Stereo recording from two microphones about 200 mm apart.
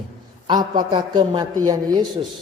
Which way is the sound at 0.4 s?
25° right (ahead or behind).